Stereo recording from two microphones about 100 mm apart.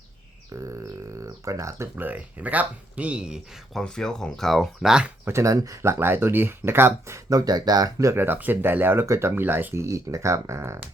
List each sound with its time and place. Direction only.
0.5 s a sound: 30° right (ahead or behind)
2.0 s speech: 15° right (ahead or behind)
3.8 s speech: 5° left (ahead or behind)
5.2 s speech: 30° right (ahead or behind)